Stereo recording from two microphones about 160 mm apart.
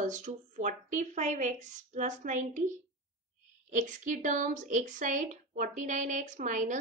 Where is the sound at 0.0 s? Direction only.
50° right (ahead or behind).